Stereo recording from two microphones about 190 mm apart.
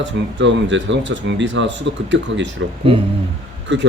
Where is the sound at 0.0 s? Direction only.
75° right (ahead or behind).